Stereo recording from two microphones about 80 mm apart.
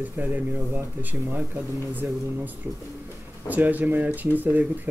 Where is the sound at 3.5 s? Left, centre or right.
Right.